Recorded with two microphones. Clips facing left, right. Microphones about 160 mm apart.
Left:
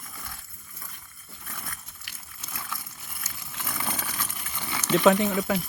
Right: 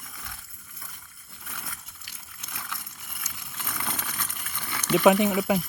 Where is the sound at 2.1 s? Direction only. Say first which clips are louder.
Left 3 dB; 75° left (ahead or behind).